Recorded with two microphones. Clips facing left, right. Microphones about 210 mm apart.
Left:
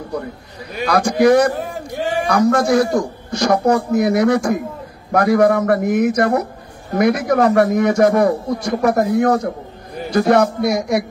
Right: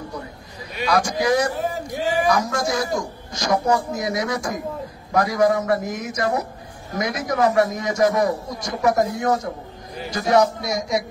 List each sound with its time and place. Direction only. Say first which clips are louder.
0.8 s a man's voice: left 7 dB; 55° left (ahead or behind)